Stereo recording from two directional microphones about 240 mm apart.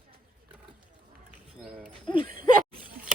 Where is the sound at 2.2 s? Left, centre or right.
Right.